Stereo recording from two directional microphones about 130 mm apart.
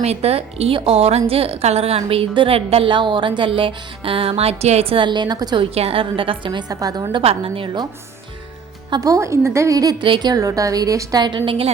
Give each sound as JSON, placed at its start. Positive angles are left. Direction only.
{"t": 0.0, "sound": "a woman's voice", "side_deg": -55}
{"t": 5.7, "sound": "a woman's voice", "side_deg": -45}
{"t": 7.2, "sound": "a woman's voice", "side_deg": -45}
{"t": 8.9, "sound": "a woman's voice", "side_deg": -25}
{"t": 10.0, "sound": "a woman's voice", "side_deg": -35}